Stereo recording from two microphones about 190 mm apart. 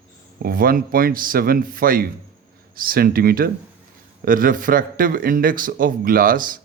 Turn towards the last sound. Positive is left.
turn(degrees=-45)  # may be behind; listen again after turning